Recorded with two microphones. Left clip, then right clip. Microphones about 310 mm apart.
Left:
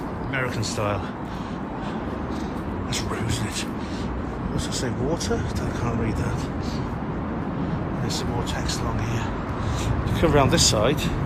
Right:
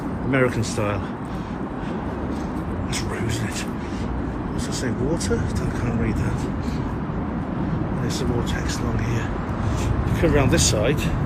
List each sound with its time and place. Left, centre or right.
0.3 s a man's voice: centre
10.2 s speech: centre